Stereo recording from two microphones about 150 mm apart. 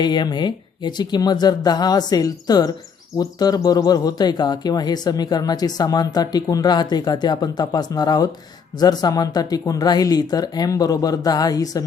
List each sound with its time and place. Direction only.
0.0 s speech: 30° left (ahead or behind)